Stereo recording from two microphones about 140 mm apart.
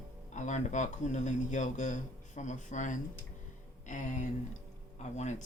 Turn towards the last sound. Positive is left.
turn(degrees=55)  # may be behind; listen again after turning